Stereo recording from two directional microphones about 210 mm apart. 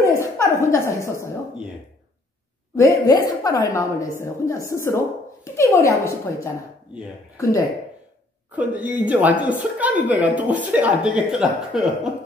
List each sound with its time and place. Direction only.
0.0 s a sound: 15° left (ahead or behind)
0.7 s a woman's voice: 15° left (ahead or behind)
2.7 s a woman's voice: 15° left (ahead or behind)
8.5 s a woman's voice: 5° right (ahead or behind)